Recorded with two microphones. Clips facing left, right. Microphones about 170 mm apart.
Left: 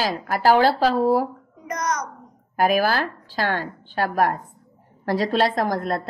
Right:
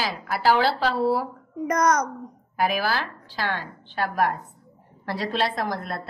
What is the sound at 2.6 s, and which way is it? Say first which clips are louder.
A woman's voice: left 5 dB; 45° left (ahead or behind).